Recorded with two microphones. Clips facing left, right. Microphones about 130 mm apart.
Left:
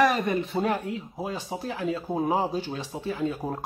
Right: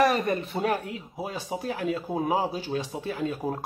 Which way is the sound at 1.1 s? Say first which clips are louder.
Even; 10° right (ahead or behind).